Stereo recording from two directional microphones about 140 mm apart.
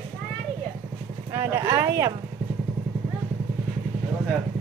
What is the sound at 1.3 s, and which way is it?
Speech, 20° right (ahead or behind).